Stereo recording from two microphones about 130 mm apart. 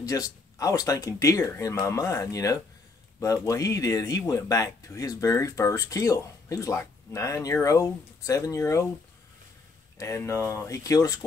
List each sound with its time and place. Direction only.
0.0 s speech: 25° left (ahead or behind)
9.9 s speech: 20° left (ahead or behind)